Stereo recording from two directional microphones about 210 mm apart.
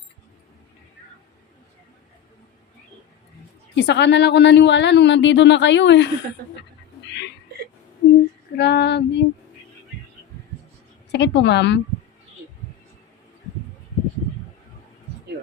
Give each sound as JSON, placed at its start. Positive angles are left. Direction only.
{"t": 3.8, "sound": "a woman's voice", "side_deg": 55}
{"t": 8.5, "sound": "female singing", "side_deg": 55}
{"t": 11.1, "sound": "a woman's voice", "side_deg": 55}